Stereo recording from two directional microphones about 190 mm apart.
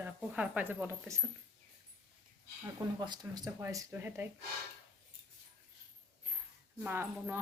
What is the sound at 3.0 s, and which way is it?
Speech, 20° right (ahead or behind).